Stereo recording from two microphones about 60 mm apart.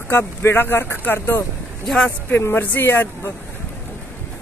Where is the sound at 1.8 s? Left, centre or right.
Centre.